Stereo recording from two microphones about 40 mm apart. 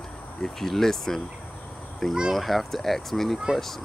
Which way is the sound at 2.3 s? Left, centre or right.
Centre.